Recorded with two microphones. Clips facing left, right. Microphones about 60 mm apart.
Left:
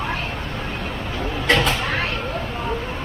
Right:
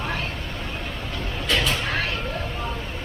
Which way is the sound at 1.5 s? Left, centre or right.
Left.